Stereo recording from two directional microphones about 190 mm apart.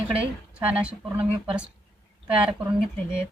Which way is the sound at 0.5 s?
5° right (ahead or behind).